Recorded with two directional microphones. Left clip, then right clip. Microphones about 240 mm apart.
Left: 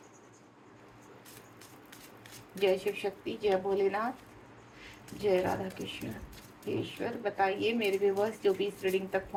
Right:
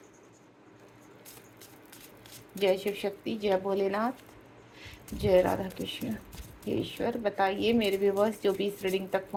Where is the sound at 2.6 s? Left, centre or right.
Right.